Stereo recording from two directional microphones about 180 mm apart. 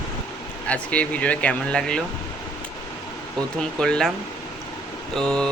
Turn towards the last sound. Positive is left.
turn(degrees=5)  # may be behind; listen again after turning